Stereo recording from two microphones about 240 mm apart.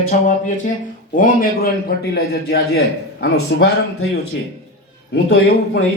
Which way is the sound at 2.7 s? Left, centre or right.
Left.